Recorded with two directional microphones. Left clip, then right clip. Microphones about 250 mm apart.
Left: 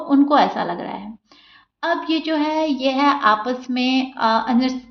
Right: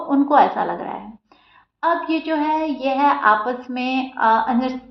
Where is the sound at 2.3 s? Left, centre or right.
Left.